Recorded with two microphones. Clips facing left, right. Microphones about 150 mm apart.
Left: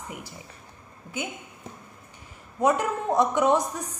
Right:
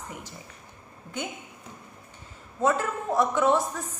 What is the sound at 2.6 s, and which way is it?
A woman's voice, 15° left (ahead or behind).